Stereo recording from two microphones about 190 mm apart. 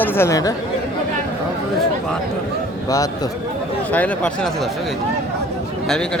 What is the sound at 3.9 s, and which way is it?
Speech, 10° left (ahead or behind).